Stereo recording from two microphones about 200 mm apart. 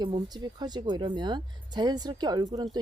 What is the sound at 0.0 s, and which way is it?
Speech, 20° right (ahead or behind).